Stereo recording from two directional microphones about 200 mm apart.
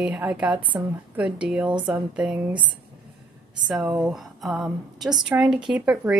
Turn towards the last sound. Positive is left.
turn(degrees=-5)  # may be behind; listen again after turning